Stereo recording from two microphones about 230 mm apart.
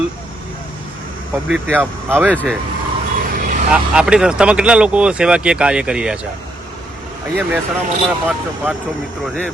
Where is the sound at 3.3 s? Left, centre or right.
Right.